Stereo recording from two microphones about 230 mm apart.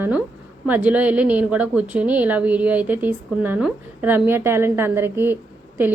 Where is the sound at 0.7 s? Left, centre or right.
Centre.